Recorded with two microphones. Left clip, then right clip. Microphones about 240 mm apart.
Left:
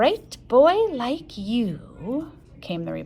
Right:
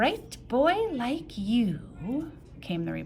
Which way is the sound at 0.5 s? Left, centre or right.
Centre.